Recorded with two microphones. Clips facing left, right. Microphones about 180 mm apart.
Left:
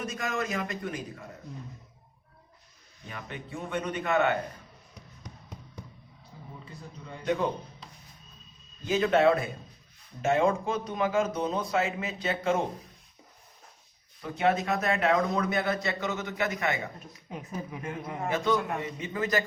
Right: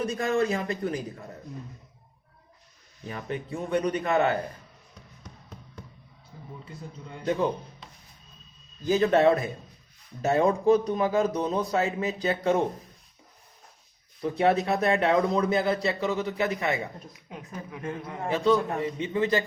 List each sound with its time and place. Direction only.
0.0 s speech: 35° right (ahead or behind)
3.1 s speech: 35° right (ahead or behind)
8.9 s speech: 35° right (ahead or behind)
14.2 s speech: 35° right (ahead or behind)
17.3 s speech: centre (ahead or behind)
18.3 s a man's voice: 30° right (ahead or behind)